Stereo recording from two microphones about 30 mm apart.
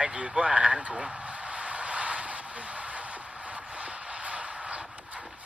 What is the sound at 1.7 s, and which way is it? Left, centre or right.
Vehicle, right.